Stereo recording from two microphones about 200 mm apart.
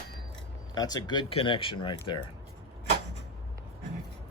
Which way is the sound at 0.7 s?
20° left (ahead or behind).